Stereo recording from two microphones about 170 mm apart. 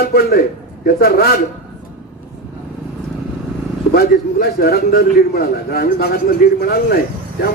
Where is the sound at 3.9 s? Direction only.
65° left (ahead or behind).